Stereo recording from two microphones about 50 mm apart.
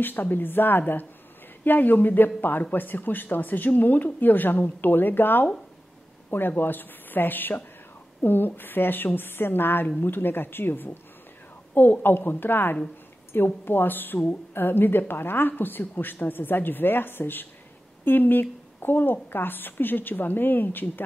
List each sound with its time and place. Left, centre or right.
0.0 s a woman's voice: left
6.6 s a woman's voice: left